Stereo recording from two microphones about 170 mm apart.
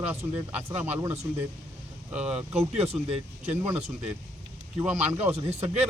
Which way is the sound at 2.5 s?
35° right (ahead or behind).